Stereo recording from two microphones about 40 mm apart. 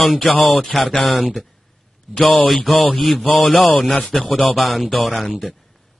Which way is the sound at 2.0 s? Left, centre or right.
Centre.